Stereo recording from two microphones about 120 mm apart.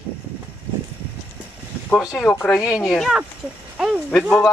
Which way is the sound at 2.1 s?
20° left (ahead or behind).